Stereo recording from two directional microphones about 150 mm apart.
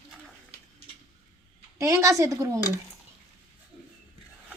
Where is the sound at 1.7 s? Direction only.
20° right (ahead or behind).